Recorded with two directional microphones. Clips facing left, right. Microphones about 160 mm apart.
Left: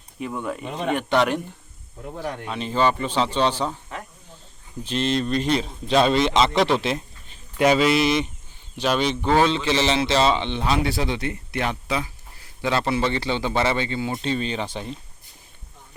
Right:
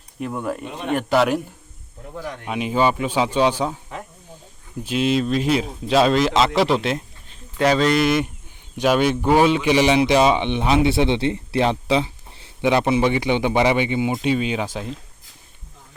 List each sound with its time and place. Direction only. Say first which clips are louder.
0.2 s speech: right 3 dB; centre (ahead or behind)
2.5 s a man's voice: right 3 dB; 10° right (ahead or behind); by 8.0 s 5° left (ahead or behind)
8.8 s a man's voice: right 4 dB; 10° right (ahead or behind)